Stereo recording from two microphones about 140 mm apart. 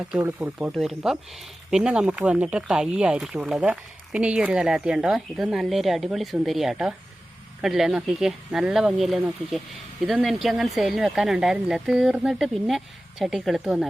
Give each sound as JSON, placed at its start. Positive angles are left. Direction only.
{"t": 0.1, "sound": "speech", "side_deg": -10}